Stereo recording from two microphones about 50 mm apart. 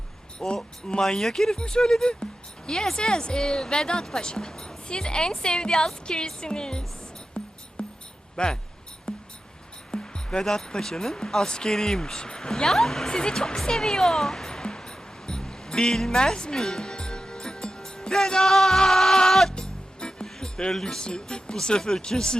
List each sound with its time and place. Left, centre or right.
0.3 s speech: centre
7.4 s music: centre
8.4 s speech: centre
9.1 s music: centre
9.9 s speech: centre
13.7 s music: centre
20.2 s speech: centre